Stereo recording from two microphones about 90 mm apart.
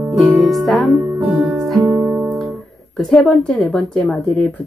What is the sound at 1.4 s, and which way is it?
Music, centre (ahead or behind).